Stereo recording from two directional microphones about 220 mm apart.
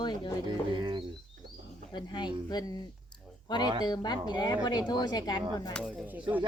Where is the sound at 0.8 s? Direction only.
20° right (ahead or behind).